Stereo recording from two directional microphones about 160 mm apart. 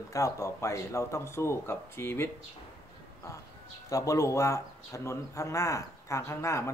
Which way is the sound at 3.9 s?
20° left (ahead or behind).